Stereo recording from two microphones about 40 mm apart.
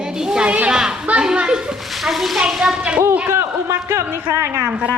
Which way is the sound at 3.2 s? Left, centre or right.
Right.